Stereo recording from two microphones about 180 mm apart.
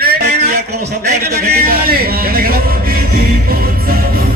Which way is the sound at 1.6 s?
55° right (ahead or behind).